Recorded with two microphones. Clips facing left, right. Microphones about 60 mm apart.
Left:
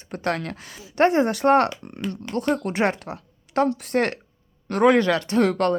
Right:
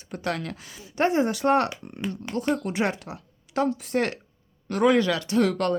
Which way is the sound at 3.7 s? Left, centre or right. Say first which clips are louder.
Left 3 dB; left.